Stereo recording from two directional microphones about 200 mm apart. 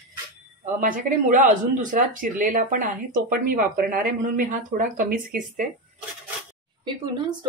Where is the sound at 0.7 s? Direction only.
40° right (ahead or behind).